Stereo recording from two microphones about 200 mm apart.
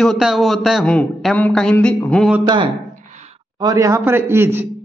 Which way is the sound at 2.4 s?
20° right (ahead or behind).